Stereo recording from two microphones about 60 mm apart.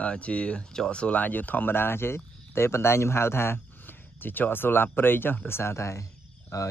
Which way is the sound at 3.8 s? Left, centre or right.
Left.